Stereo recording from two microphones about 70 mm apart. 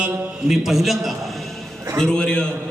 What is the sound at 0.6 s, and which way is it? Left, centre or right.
Speech, centre.